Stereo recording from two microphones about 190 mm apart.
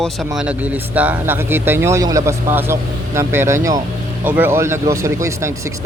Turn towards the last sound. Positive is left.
turn(degrees=-15)  # may be behind; listen again after turning